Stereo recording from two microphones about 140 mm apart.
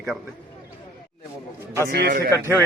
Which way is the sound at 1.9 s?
90° right.